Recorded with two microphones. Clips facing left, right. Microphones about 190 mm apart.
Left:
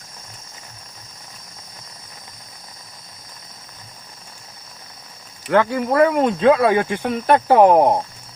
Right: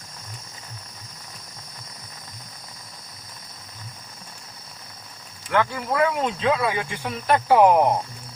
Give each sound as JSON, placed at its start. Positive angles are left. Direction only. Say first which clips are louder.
{"t": 5.5, "sound": "speech", "louder": "left 6 dB", "side_deg": 45}